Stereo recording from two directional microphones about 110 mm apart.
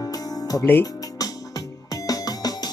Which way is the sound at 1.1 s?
35° left (ahead or behind).